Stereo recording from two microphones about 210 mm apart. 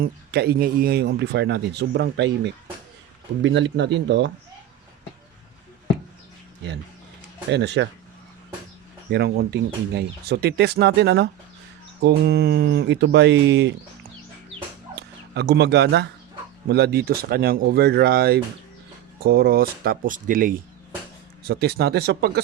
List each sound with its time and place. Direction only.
0.0 s speech: 50° right (ahead or behind)
7.5 s speech: 55° right (ahead or behind)
9.0 s speech: 50° right (ahead or behind)
14.9 s speech: 50° right (ahead or behind)